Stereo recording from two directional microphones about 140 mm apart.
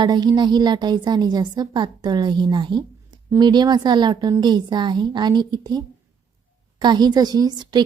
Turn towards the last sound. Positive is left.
turn(degrees=-30)  # may be behind; listen again after turning